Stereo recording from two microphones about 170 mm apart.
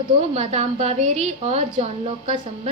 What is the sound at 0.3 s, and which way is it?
A woman's voice, 40° right (ahead or behind).